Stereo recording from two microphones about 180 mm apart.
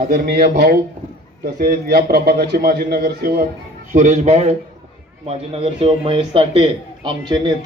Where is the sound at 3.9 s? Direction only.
40° right (ahead or behind).